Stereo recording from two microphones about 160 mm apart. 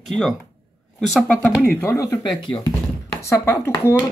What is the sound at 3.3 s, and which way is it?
Speech, 15° left (ahead or behind).